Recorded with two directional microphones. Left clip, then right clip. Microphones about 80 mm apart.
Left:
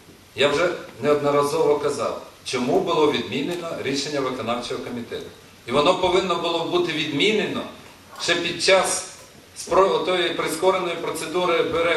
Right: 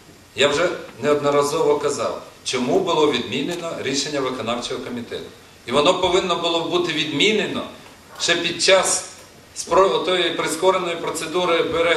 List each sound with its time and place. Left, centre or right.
0.4 s a man's voice: right